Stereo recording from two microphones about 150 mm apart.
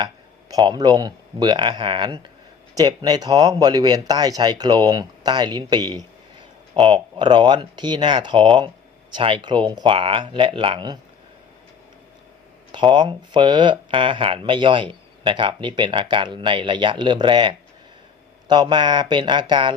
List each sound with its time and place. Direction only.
0.5 s speech: 30° right (ahead or behind)
12.7 s speech: 30° right (ahead or behind)